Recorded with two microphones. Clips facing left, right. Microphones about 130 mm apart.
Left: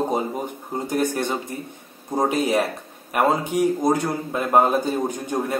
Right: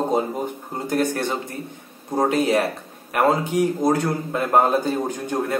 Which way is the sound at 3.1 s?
15° left (ahead or behind).